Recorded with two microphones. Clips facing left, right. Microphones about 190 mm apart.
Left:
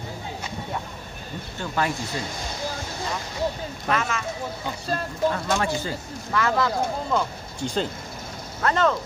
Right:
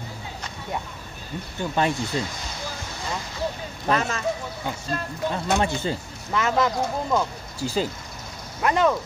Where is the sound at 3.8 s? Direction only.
35° right (ahead or behind).